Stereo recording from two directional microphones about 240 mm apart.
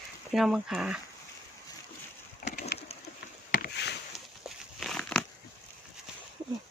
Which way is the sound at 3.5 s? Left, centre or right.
Left.